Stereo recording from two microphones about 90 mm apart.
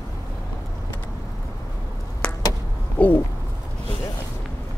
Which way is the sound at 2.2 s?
15° left (ahead or behind).